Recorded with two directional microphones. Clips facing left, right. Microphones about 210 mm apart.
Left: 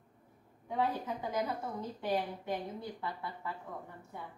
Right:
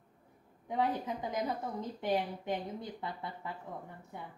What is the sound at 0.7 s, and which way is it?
A woman's voice, 15° right (ahead or behind).